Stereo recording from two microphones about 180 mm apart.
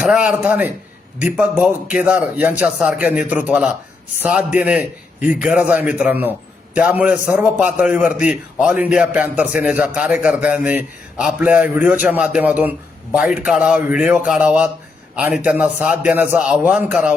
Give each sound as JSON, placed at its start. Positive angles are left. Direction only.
{"t": 0.0, "sound": "a man's voice", "side_deg": -5}